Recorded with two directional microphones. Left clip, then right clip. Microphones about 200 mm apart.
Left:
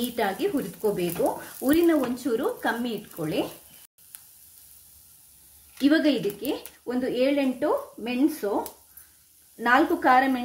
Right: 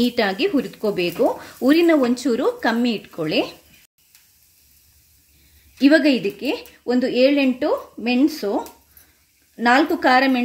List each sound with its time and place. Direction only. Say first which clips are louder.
0.1 s speech: right 6 dB; 40° right (ahead or behind)
5.8 s speech: right 7 dB; 45° right (ahead or behind)
9.6 s speech: right 5 dB; 50° right (ahead or behind)